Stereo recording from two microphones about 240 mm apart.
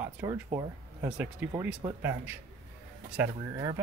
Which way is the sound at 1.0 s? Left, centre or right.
Centre.